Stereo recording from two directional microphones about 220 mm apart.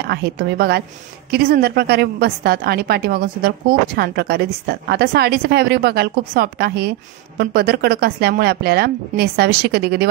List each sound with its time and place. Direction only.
0.0 s a woman's voice: 45° right (ahead or behind)